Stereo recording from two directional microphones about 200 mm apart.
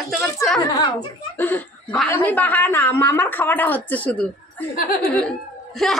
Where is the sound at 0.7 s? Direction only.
20° left (ahead or behind).